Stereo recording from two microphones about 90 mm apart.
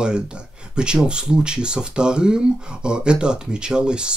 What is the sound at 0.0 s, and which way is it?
Speech, 10° right (ahead or behind).